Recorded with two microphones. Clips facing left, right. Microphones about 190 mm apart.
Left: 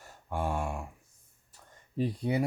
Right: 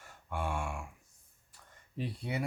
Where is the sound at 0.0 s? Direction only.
35° left (ahead or behind).